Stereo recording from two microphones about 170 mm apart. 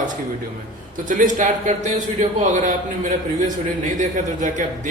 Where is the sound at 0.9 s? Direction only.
50° right (ahead or behind).